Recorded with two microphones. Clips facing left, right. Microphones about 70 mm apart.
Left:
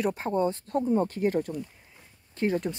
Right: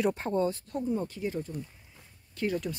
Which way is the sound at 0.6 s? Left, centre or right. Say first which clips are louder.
Left 6 dB; left.